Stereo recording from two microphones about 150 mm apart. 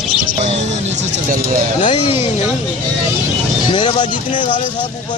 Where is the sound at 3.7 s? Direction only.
30° left (ahead or behind).